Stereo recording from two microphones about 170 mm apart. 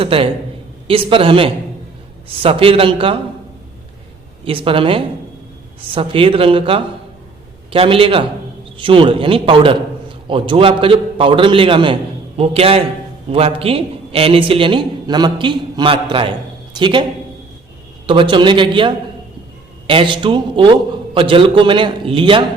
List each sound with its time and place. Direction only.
0.0 s a man's voice: 35° right (ahead or behind)
4.4 s a man's voice: 30° right (ahead or behind)